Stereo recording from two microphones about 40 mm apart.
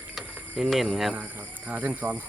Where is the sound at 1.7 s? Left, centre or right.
Right.